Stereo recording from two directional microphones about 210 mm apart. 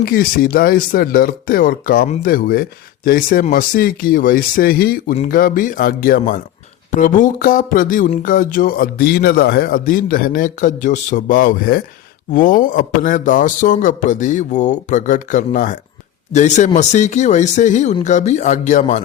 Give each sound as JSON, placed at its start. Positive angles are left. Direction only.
{"t": 0.0, "sound": "speech", "side_deg": 45}